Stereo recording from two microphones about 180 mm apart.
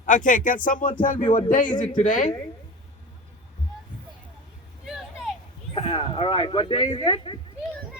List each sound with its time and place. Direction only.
0.0 s speech: 45° left (ahead or behind)
5.7 s speech: 30° left (ahead or behind)